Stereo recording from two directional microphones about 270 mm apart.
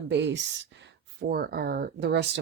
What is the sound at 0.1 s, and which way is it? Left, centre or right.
Speech, right.